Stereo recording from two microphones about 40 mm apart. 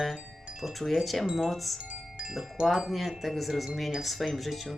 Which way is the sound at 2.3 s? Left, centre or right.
Centre.